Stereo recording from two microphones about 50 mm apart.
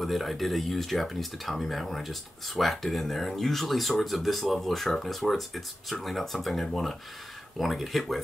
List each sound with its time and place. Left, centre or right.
0.0 s speech: centre